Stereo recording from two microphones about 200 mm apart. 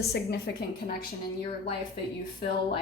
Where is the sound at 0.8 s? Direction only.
40° left (ahead or behind).